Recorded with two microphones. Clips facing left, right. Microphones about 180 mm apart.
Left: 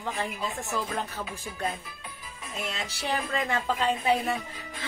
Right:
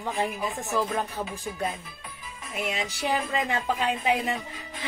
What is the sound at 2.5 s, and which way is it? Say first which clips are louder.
A woman's voice: right 4 dB; 15° right (ahead or behind).